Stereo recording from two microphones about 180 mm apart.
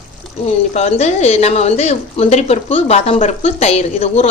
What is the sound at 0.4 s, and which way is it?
A woman's voice, 35° left (ahead or behind).